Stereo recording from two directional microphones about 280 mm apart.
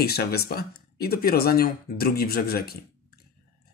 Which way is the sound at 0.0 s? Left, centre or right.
Left.